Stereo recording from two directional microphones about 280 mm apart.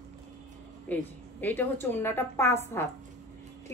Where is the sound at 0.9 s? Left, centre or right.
Centre.